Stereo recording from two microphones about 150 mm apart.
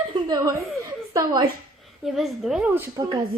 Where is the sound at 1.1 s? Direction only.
30° right (ahead or behind).